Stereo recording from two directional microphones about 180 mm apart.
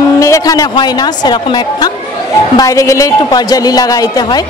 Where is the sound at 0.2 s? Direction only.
20° left (ahead or behind).